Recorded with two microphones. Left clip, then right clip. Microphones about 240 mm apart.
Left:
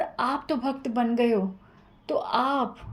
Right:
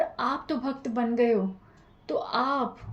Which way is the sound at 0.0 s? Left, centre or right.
Left.